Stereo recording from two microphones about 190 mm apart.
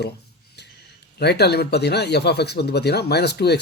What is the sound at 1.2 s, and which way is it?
Speech, 60° left (ahead or behind).